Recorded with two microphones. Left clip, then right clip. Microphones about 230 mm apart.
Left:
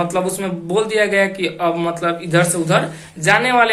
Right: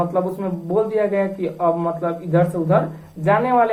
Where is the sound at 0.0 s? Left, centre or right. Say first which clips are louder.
Left 2 dB; left.